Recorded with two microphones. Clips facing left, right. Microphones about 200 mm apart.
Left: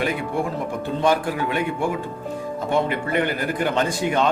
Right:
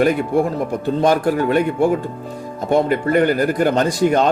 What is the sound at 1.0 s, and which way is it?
A man's voice, 45° right (ahead or behind).